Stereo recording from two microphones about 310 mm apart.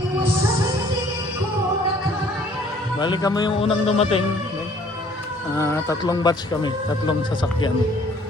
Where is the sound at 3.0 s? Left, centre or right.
Centre.